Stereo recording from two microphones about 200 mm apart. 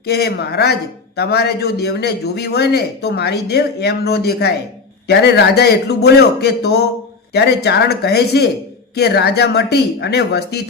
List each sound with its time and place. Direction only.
0.0 s a man's voice: 55° left (ahead or behind)